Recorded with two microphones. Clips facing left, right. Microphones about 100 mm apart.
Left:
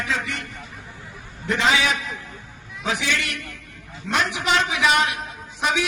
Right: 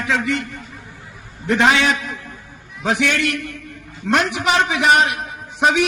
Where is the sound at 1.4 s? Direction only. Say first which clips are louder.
Right 5 dB; 65° right (ahead or behind).